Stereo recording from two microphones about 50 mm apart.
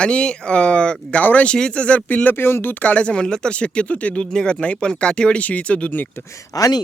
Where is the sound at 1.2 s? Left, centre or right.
Left.